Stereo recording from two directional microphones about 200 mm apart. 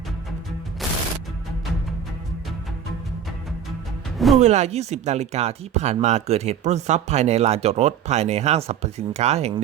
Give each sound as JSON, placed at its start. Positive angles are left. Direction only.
{"t": 4.4, "sound": "speech", "side_deg": -35}